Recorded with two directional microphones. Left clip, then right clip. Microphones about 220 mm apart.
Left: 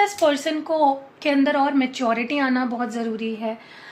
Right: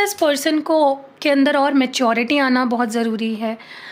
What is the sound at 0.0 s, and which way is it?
A woman's voice, 55° right (ahead or behind).